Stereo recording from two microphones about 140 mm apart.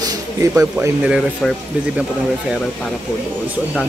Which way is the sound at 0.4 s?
20° right (ahead or behind).